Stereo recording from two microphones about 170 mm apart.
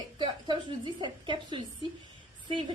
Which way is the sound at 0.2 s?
25° right (ahead or behind).